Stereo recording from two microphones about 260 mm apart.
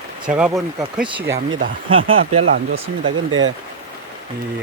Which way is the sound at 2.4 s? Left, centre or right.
Right.